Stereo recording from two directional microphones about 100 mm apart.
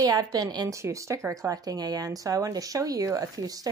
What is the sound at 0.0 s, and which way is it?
Speech, 40° right (ahead or behind).